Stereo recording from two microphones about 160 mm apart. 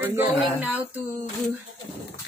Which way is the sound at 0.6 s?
10° right (ahead or behind).